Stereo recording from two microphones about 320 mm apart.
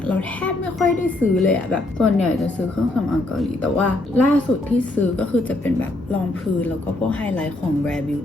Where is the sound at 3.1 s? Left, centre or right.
Centre.